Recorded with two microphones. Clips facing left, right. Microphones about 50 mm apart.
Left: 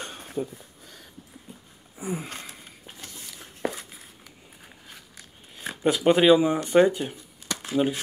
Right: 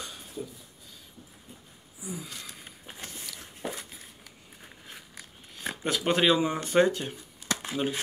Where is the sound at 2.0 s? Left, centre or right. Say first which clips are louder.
Left 7 dB; left.